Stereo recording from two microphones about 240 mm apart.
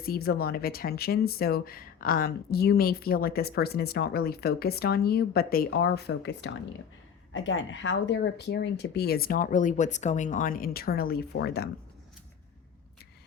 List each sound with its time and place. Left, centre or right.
0.0 s speech: left